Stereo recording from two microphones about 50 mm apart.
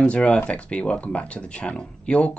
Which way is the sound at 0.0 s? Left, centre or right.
Left.